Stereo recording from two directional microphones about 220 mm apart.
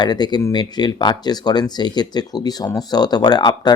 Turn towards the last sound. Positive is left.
turn(degrees=20)  # may be behind; listen again after turning